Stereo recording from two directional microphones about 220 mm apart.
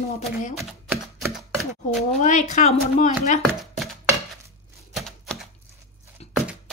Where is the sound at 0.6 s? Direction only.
Centre (ahead or behind).